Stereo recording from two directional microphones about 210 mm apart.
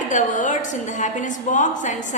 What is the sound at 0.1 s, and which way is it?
A woman's voice, 35° left (ahead or behind).